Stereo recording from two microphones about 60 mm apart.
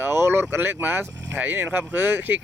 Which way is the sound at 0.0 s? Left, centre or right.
Right.